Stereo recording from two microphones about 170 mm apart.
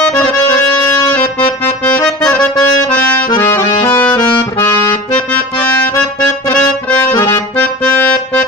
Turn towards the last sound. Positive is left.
turn(degrees=25)  # may be behind; listen again after turning